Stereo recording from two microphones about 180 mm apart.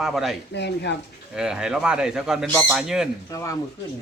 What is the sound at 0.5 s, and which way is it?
Speech, 70° left (ahead or behind).